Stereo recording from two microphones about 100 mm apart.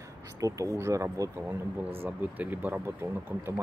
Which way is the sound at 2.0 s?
15° right (ahead or behind).